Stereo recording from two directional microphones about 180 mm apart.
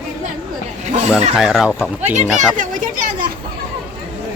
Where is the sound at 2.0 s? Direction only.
40° right (ahead or behind).